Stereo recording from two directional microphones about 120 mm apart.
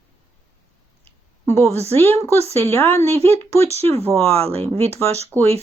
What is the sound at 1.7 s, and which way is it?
Speech, 60° right (ahead or behind).